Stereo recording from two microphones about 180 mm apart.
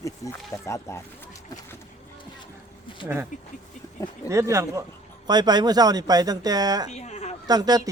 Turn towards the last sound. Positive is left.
turn(degrees=-20)  # may be behind; listen again after turning